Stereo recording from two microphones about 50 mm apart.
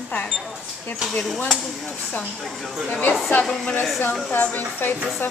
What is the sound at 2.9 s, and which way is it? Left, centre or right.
Speech, left.